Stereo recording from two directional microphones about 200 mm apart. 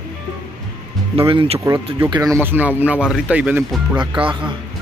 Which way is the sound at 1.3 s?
25° right (ahead or behind).